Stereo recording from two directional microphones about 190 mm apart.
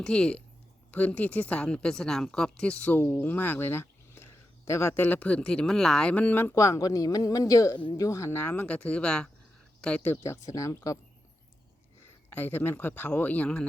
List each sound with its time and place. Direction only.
0.0 s a woman's voice: 5° left (ahead or behind)
12.3 s a woman's voice: 10° left (ahead or behind)